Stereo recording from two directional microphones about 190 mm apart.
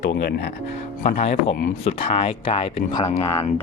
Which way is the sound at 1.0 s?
35° left (ahead or behind).